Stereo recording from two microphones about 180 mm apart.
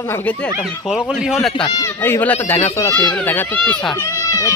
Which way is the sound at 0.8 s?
5° right (ahead or behind).